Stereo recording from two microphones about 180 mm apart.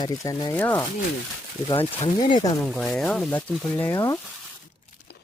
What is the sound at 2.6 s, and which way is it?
Speech, centre (ahead or behind).